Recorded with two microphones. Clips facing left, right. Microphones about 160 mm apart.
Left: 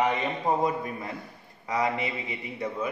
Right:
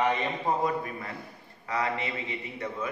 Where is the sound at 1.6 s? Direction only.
15° left (ahead or behind).